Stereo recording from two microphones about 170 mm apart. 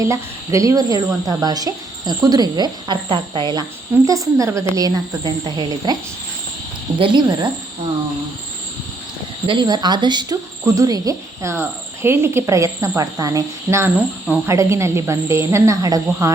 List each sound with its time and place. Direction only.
0.0 s speech: 20° right (ahead or behind)
7.0 s speech: 25° right (ahead or behind)
9.5 s speech: 25° right (ahead or behind)